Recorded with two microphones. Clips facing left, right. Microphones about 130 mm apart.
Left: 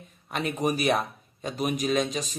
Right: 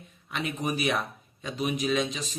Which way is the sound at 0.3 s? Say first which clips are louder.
Left 4 dB; 45° left (ahead or behind).